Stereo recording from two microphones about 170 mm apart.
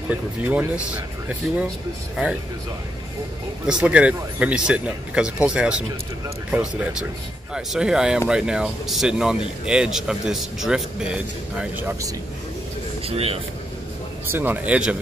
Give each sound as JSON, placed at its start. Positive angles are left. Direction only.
{"t": 0.1, "sound": "speech", "side_deg": -10}
{"t": 3.6, "sound": "a man's voice", "side_deg": -5}
{"t": 13.0, "sound": "speech", "side_deg": -35}
{"t": 14.3, "sound": "speech", "side_deg": -10}